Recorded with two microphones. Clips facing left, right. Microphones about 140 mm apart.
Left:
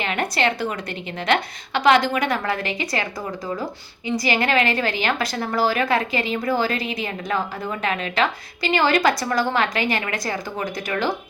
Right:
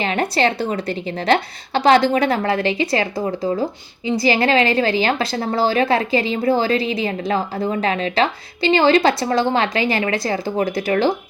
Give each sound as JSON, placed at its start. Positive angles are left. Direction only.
{"t": 0.0, "sound": "a woman's voice", "side_deg": -35}